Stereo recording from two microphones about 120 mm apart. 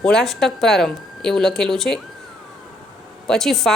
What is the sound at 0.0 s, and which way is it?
Speech, 5° left (ahead or behind).